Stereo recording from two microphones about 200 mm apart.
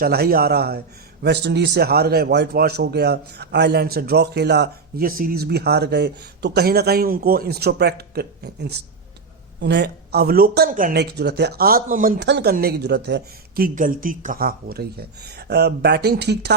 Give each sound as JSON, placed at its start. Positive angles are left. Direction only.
{"t": 0.0, "sound": "a man's voice", "side_deg": -50}
{"t": 10.9, "sound": "speech", "side_deg": -55}
{"t": 13.7, "sound": "a man's voice", "side_deg": -45}